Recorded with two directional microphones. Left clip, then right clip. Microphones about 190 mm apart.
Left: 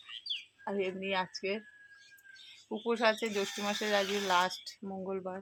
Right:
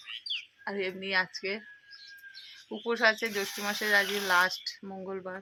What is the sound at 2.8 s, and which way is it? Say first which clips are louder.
Speech: right 3 dB; 5° left (ahead or behind).